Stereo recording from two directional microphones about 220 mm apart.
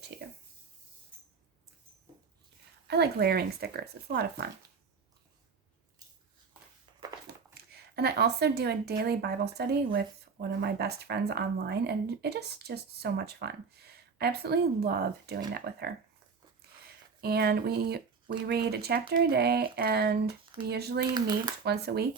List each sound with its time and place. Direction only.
0.1 s speech: 50° right (ahead or behind)
2.8 s speech: 50° right (ahead or behind)
7.5 s speech: 45° right (ahead or behind)
17.2 s speech: 45° right (ahead or behind)
21.1 s speech: 20° right (ahead or behind)
21.6 s speech: 45° right (ahead or behind)